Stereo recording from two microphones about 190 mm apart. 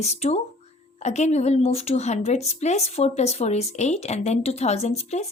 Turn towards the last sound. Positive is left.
turn(degrees=35)  # may be behind; listen again after turning